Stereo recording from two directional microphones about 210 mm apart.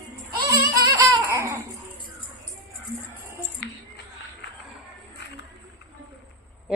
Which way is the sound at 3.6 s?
55° left (ahead or behind).